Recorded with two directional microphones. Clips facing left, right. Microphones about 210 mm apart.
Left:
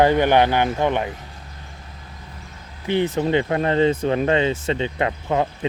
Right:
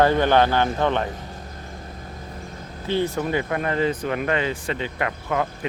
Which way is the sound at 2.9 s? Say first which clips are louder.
Left 3 dB; 20° left (ahead or behind).